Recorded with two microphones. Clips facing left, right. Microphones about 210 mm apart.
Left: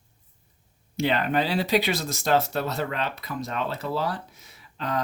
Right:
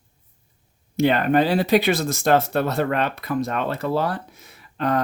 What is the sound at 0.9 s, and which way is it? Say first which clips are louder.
Speech: right 6 dB; 50° right (ahead or behind).